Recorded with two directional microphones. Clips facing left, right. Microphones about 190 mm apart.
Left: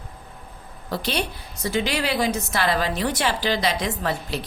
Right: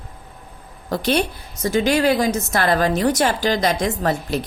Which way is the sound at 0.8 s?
50° right (ahead or behind).